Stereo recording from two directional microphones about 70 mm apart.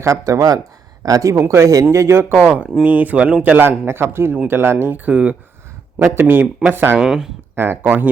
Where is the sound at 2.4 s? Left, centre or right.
Right.